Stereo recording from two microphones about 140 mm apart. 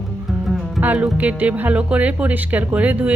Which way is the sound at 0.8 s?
10° right (ahead or behind).